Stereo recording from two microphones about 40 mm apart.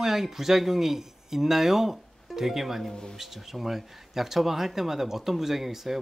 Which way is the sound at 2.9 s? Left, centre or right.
Centre.